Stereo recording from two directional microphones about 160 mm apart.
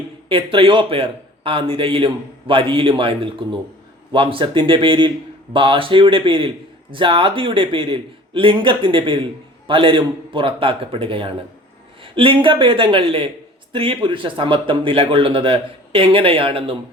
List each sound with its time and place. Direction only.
0.3 s a man's voice: 35° right (ahead or behind)